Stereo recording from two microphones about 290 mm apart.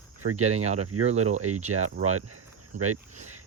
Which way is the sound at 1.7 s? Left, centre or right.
Right.